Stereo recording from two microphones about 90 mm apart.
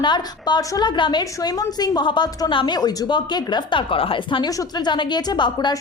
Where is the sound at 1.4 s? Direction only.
40° left (ahead or behind); by 4.4 s 70° left (ahead or behind).